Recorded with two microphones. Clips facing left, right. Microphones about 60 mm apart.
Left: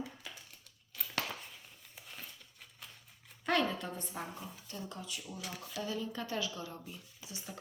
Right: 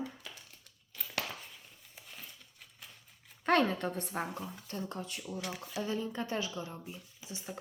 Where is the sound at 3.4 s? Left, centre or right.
Right.